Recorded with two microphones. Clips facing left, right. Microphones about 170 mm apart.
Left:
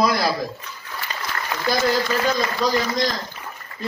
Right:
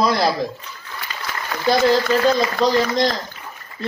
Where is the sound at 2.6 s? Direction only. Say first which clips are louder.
Right 4 dB; 25° right (ahead or behind).